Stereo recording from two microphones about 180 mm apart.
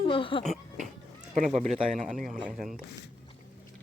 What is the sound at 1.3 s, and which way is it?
Speech, 40° right (ahead or behind).